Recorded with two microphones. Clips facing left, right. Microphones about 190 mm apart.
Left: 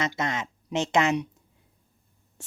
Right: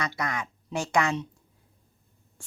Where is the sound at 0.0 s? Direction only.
25° left (ahead or behind).